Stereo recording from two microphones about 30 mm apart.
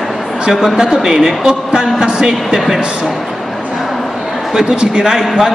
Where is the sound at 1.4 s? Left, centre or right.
Right.